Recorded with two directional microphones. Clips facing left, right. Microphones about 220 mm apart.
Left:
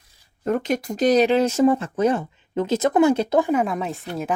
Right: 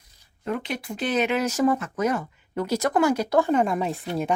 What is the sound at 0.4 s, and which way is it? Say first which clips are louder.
Speech: left 7 dB; 45° left (ahead or behind).